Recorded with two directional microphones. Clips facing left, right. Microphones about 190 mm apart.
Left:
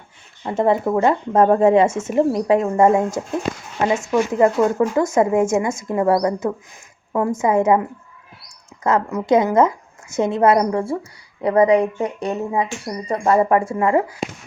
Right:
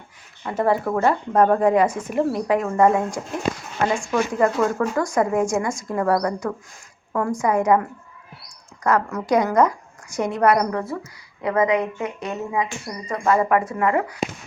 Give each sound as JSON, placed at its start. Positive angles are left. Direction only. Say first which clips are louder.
{"t": 0.4, "sound": "speech", "louder": "left 3 dB", "side_deg": 25}